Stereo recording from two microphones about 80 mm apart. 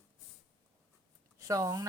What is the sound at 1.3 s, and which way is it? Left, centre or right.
Speech, right.